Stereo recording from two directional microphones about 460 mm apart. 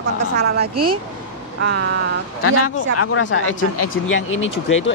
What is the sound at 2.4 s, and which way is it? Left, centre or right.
Speech, left.